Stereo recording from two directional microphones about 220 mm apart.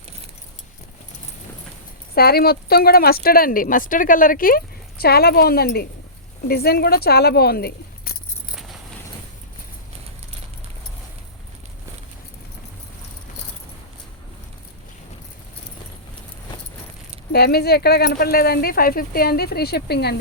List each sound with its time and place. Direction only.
2.1 s speech: 45° left (ahead or behind)
17.3 s speech: 45° left (ahead or behind)